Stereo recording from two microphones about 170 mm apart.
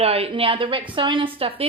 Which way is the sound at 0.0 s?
35° right (ahead or behind).